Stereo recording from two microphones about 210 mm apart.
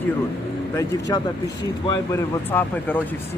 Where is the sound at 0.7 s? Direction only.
20° left (ahead or behind).